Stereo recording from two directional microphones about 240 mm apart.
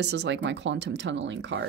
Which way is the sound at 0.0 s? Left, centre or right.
Right.